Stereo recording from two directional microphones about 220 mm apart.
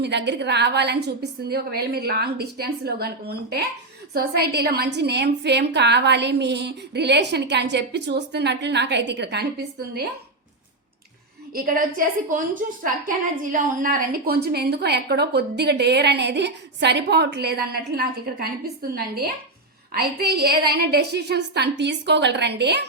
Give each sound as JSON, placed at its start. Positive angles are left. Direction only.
{"t": 0.0, "sound": "a woman's voice", "side_deg": -50}
{"t": 11.5, "sound": "a woman's voice", "side_deg": -40}